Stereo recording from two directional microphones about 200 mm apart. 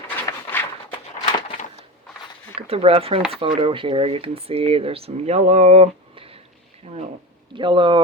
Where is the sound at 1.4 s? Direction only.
30° left (ahead or behind).